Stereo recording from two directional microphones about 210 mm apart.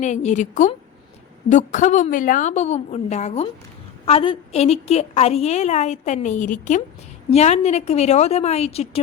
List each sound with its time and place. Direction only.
0.0 s a woman's voice: 35° left (ahead or behind)